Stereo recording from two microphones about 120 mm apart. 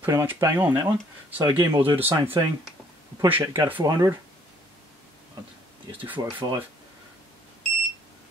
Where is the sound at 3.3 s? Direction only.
20° right (ahead or behind).